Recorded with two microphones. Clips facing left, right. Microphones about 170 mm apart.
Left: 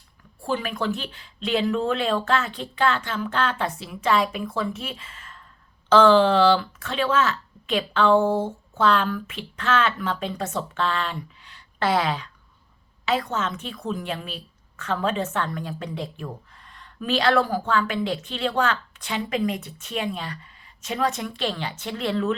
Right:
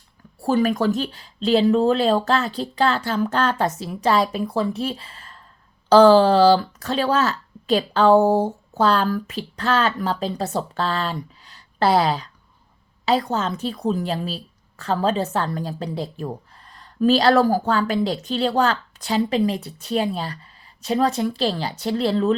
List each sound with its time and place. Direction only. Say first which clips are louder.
0.4 s a woman's voice: right 7 dB; 40° right (ahead or behind)